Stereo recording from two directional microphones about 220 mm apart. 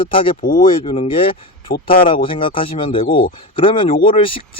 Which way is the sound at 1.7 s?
40° left (ahead or behind).